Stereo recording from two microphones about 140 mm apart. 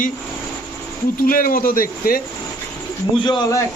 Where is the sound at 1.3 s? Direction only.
90° left.